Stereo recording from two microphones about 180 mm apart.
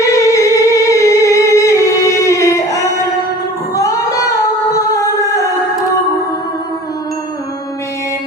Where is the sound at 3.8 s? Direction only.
20° left (ahead or behind).